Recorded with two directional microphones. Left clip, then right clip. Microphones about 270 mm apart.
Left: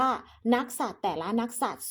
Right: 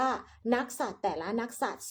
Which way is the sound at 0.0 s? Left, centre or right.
Centre.